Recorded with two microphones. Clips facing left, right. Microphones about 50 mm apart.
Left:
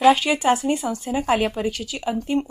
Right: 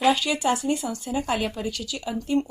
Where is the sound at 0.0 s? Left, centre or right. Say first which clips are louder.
Left 5 dB; left.